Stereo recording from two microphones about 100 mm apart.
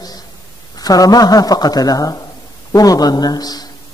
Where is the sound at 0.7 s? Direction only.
40° left (ahead or behind).